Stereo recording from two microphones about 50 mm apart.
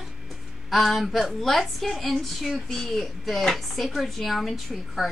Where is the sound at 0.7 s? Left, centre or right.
Centre.